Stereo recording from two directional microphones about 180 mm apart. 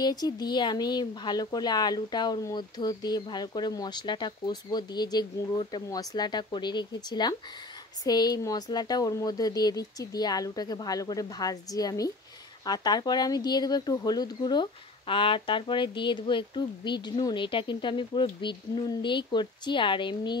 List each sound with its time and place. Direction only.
0.0 s speech: 20° left (ahead or behind)